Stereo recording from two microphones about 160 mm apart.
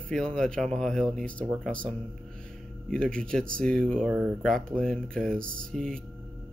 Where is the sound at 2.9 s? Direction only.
5° left (ahead or behind).